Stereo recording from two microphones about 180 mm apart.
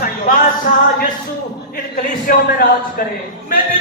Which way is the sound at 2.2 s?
50° left (ahead or behind).